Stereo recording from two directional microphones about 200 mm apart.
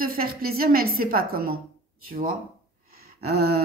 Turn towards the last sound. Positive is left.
turn(degrees=-50)  # may be behind; listen again after turning